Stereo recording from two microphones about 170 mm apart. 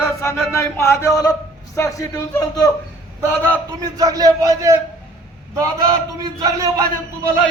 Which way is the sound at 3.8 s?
20° right (ahead or behind).